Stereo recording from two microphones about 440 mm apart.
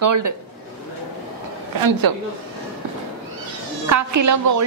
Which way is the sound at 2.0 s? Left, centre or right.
Right.